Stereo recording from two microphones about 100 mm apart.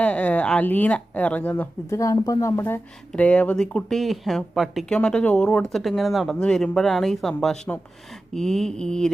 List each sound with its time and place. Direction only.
0.0 s speech: 15° left (ahead or behind)
1.9 s speech: 30° left (ahead or behind); by 4.9 s centre (ahead or behind)
4.9 s speech: 10° left (ahead or behind)